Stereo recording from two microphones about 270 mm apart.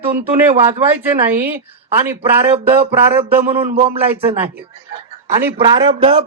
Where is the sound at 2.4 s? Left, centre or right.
Right.